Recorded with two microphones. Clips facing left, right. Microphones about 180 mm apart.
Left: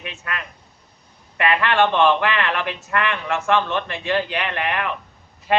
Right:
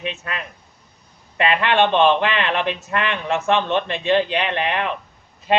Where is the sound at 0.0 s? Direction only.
25° right (ahead or behind).